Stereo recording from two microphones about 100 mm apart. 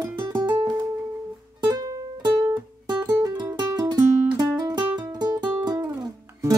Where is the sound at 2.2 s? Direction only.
45° right (ahead or behind).